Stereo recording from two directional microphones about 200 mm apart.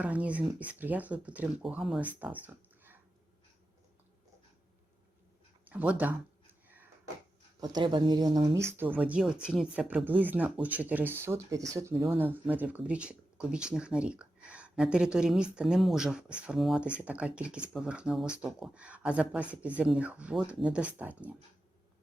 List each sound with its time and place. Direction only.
0.0 s speech: 5° right (ahead or behind)
5.6 s a sound: 5° right (ahead or behind)
7.6 s speech: 20° right (ahead or behind)